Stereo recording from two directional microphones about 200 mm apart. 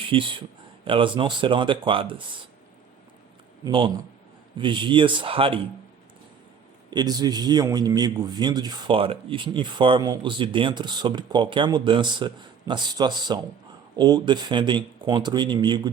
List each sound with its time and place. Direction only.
0.1 s speech: 25° right (ahead or behind)
3.6 s speech: 25° right (ahead or behind)
6.9 s speech: 20° right (ahead or behind)